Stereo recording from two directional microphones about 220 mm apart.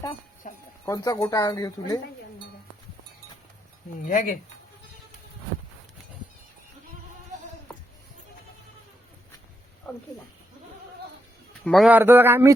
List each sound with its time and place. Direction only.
0.4 s speech: 35° left (ahead or behind)
0.9 s speech: 15° left (ahead or behind)
4.0 s speech: 35° left (ahead or behind)
11.6 s speech: centre (ahead or behind)